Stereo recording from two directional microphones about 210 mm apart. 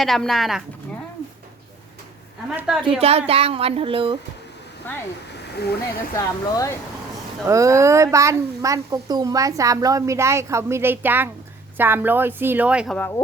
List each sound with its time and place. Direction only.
0.0 s speech: centre (ahead or behind)
2.5 s speech: 5° right (ahead or behind)
3.0 s speech: 30° right (ahead or behind)
5.5 s speech: 50° left (ahead or behind)
6.1 s speech: 15° left (ahead or behind)
7.4 s speech: 15° right (ahead or behind)
13.0 s speech: 10° left (ahead or behind)